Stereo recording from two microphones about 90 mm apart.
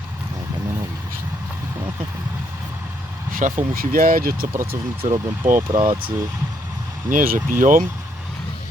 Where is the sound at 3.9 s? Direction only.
30° right (ahead or behind).